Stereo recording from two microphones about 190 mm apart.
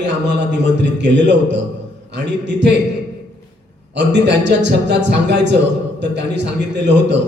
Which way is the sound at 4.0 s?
65° right (ahead or behind).